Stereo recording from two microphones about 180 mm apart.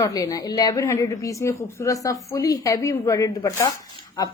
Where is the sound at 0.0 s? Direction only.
20° left (ahead or behind).